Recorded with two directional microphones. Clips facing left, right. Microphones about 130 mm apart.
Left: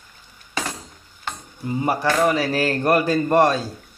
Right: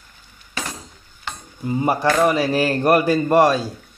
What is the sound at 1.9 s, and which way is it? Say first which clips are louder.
A man's voice: right 2 dB; 20° right (ahead or behind).